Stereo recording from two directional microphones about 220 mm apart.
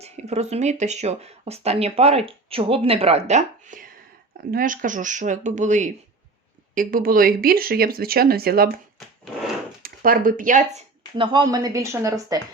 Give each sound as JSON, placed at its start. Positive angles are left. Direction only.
{"t": 0.0, "sound": "speech", "side_deg": -30}
{"t": 9.8, "sound": "speech", "side_deg": -40}